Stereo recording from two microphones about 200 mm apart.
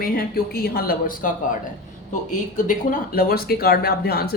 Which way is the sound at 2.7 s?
45° left (ahead or behind).